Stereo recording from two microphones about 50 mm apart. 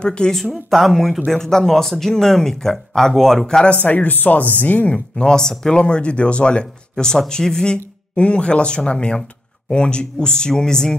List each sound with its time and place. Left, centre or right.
0.0 s speech: centre
0.4 s speech: centre
3.7 s speech: left
5.1 s speech: centre